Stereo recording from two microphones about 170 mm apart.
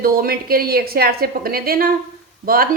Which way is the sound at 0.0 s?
60° right (ahead or behind).